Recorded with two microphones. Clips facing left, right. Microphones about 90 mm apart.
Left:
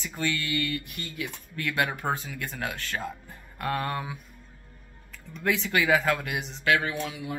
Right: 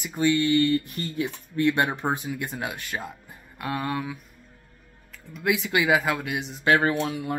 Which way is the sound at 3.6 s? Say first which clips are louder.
Right 1 dB; 5° right (ahead or behind).